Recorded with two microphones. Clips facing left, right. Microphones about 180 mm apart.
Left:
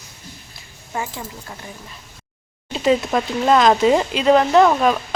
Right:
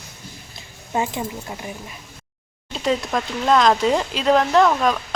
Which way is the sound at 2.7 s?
5° left (ahead or behind).